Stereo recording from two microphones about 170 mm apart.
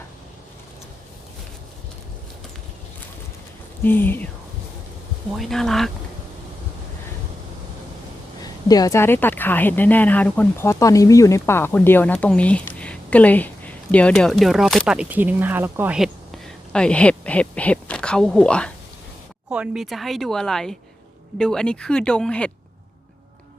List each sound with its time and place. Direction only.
3.8 s speech: 10° left (ahead or behind)
5.4 s a woman's voice: centre (ahead or behind)
8.4 s speech: 20° left (ahead or behind); by 18.7 s 5° left (ahead or behind)
19.5 s a woman's voice: 5° right (ahead or behind)